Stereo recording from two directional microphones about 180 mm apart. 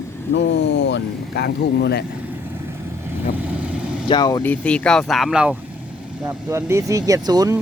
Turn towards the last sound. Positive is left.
turn(degrees=-20)  # may be behind; listen again after turning